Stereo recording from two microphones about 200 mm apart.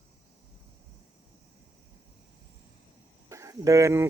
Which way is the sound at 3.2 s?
15° right (ahead or behind).